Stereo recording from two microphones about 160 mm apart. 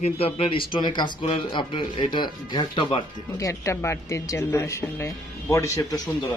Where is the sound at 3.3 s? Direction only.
20° left (ahead or behind).